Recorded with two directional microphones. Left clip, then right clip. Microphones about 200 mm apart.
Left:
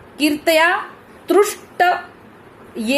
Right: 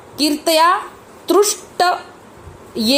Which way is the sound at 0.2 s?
10° right (ahead or behind).